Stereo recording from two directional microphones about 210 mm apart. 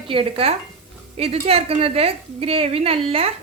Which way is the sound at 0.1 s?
25° right (ahead or behind).